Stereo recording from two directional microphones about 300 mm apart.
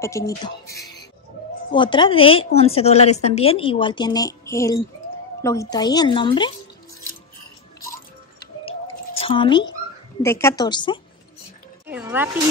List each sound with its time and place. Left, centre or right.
0.0 s a woman's voice: centre
9.2 s a woman's voice: centre
11.9 s music: centre